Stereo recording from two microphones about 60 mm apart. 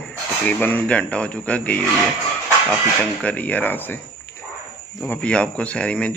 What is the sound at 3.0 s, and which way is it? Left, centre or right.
Speech, left.